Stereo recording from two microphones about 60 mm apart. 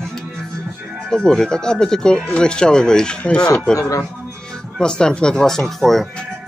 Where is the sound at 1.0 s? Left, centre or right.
Centre.